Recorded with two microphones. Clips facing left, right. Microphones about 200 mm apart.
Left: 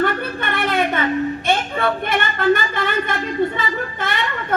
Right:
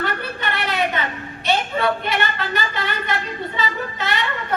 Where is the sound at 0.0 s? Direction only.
50° left (ahead or behind).